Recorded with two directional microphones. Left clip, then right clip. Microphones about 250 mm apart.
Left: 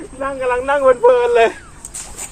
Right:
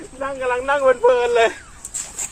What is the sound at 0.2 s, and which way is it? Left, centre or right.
A man's voice, centre.